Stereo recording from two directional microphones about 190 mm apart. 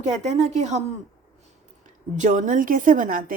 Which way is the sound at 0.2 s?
35° right (ahead or behind).